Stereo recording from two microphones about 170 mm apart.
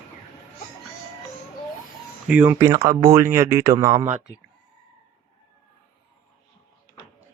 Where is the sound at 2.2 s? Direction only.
10° right (ahead or behind).